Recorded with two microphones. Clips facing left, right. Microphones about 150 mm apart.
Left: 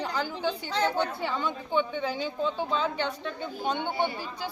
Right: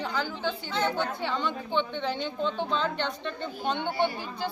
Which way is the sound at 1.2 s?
5° left (ahead or behind).